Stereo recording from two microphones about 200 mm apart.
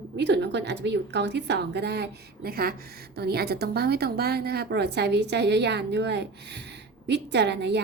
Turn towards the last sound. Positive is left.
turn(degrees=-60)  # may be behind; listen again after turning